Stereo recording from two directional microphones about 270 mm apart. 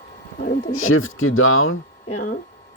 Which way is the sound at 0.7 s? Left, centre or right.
Left.